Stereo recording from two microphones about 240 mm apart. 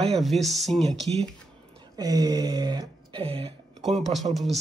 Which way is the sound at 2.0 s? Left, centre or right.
Centre.